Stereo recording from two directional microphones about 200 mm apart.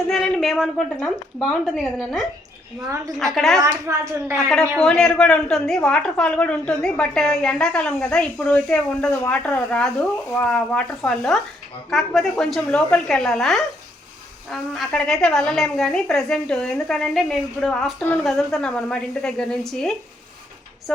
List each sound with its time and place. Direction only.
0.1 s a woman's voice: 5° left (ahead or behind)
2.8 s speech: 15° right (ahead or behind)
3.3 s a woman's voice: centre (ahead or behind)
3.6 s speech: 15° right (ahead or behind)
4.4 s a woman's voice: centre (ahead or behind)